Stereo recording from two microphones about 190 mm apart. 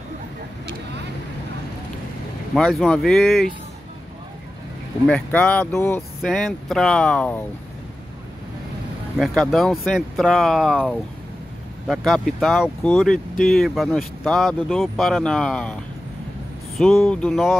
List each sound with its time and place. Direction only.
2.5 s speech: centre (ahead or behind)
5.0 s speech: 5° left (ahead or behind)
9.2 s speech: centre (ahead or behind)